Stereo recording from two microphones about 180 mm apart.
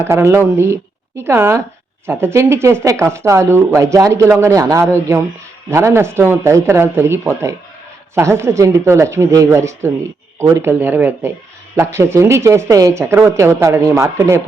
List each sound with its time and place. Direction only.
0.0 s speech: 15° right (ahead or behind)